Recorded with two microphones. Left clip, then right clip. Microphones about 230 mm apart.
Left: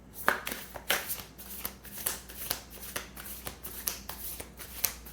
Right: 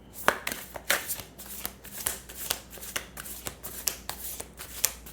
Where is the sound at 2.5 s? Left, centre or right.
Right.